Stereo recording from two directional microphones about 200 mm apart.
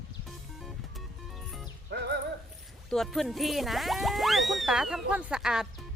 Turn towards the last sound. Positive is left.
turn(degrees=-5)  # may be behind; listen again after turning